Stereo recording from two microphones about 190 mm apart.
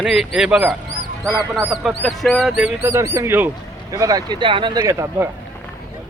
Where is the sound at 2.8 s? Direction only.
15° right (ahead or behind).